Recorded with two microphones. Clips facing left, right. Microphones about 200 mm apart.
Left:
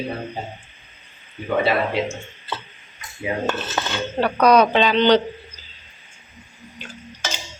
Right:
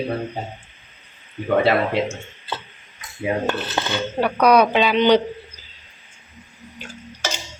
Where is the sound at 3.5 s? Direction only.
15° right (ahead or behind).